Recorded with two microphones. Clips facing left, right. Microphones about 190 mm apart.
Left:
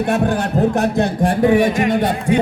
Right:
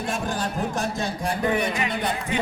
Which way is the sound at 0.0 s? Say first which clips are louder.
Left 10 dB; 65° left (ahead or behind).